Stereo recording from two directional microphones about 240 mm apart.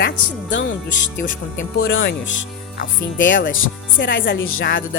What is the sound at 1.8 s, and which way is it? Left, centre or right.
Speech, left.